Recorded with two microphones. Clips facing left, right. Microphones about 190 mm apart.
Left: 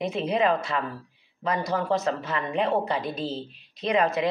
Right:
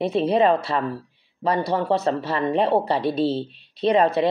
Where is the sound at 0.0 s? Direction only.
35° right (ahead or behind).